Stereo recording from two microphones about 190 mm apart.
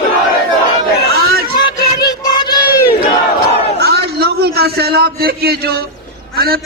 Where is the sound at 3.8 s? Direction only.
55° right (ahead or behind).